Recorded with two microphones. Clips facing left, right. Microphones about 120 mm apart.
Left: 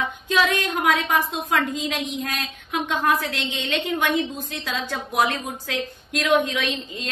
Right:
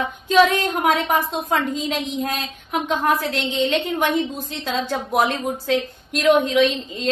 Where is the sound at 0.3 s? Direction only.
30° right (ahead or behind).